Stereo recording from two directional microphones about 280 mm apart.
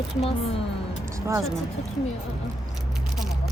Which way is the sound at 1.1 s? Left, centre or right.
Centre.